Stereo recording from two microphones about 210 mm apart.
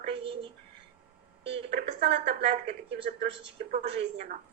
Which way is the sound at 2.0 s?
30° right (ahead or behind).